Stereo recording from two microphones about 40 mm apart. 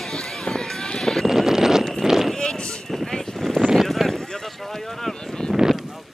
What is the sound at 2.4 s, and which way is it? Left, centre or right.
Vehicle, left.